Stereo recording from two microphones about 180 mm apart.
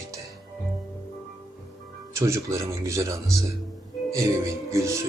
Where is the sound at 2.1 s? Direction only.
15° right (ahead or behind).